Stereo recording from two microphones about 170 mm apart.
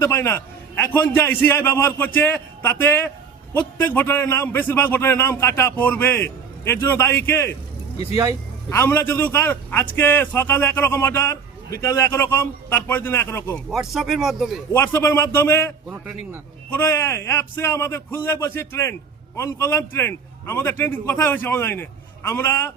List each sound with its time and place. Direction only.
0.0 s a man's voice: 15° left (ahead or behind)
8.1 s speech: 20° right (ahead or behind)
8.7 s a man's voice: 15° left (ahead or behind)
13.7 s speech: centre (ahead or behind)
14.7 s a man's voice: 15° left (ahead or behind)
15.9 s a man's voice: 15° right (ahead or behind)
16.7 s a man's voice: 15° left (ahead or behind)